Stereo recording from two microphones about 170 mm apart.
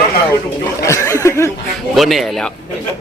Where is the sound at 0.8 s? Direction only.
20° left (ahead or behind).